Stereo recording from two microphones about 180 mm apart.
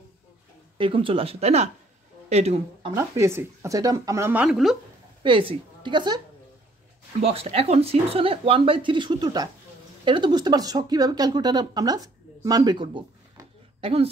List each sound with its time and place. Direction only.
0.7 s a woman's voice: 30° right (ahead or behind)
2.9 s speech: 15° right (ahead or behind)
5.2 s a woman's voice: 30° right (ahead or behind)